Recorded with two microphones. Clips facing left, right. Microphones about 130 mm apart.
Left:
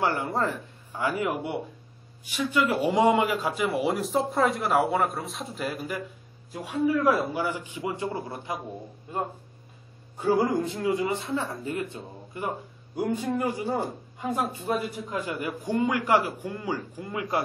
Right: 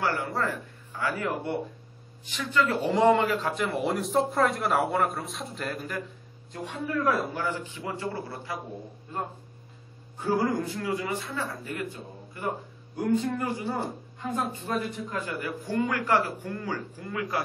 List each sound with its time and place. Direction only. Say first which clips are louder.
0.0 s a man's voice: left 2 dB; 20° left (ahead or behind); by 7.2 s centre (ahead or behind)
7.3 s speech: left 2 dB; 10° left (ahead or behind)
10.1 s a man's voice: left 3 dB; 15° left (ahead or behind)